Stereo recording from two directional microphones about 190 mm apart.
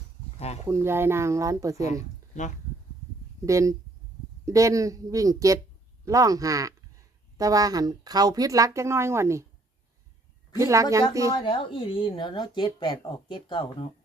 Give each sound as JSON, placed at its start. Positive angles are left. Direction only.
{"t": 0.3, "sound": "speech", "side_deg": 35}
{"t": 0.6, "sound": "speech", "side_deg": -15}
{"t": 1.9, "sound": "a sound", "side_deg": 40}
{"t": 3.4, "sound": "speech", "side_deg": -15}
{"t": 10.5, "sound": "speech", "side_deg": -15}
{"t": 11.3, "sound": "speech", "side_deg": 25}